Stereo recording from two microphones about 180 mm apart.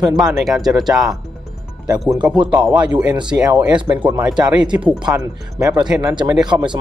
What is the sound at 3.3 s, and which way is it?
Speech, 10° right (ahead or behind).